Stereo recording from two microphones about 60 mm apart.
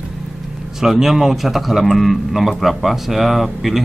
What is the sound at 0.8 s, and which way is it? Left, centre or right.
A man's voice, centre.